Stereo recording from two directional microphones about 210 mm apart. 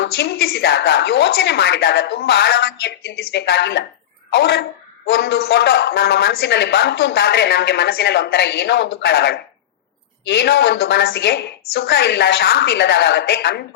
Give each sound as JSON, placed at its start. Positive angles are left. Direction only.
{"t": 0.0, "sound": "a woman's voice", "side_deg": 50}